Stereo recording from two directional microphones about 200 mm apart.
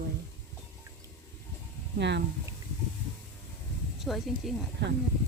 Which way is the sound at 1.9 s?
60° right (ahead or behind).